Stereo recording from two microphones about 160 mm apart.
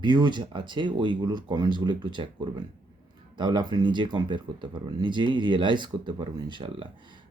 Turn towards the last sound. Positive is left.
turn(degrees=-35)  # may be behind; listen again after turning